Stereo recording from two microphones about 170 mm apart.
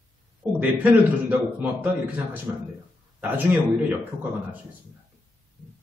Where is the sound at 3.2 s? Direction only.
10° right (ahead or behind).